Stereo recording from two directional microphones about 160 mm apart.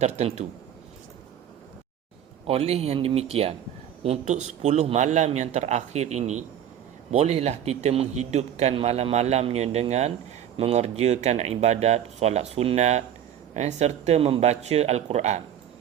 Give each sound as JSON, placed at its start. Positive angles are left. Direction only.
{"t": 0.0, "sound": "a man's voice", "side_deg": -40}
{"t": 2.5, "sound": "a man's voice", "side_deg": -40}